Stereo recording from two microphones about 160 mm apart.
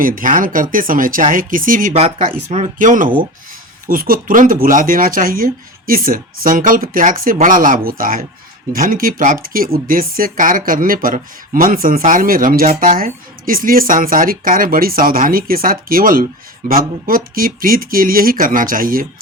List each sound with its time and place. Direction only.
0.0 s speech: 55° right (ahead or behind)
1.9 s speech: 40° right (ahead or behind); by 19.0 s 60° right (ahead or behind)